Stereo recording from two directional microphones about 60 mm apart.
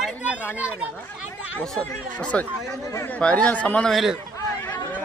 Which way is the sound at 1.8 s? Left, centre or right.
Left.